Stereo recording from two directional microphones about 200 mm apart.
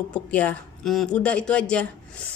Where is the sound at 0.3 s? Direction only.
5° left (ahead or behind).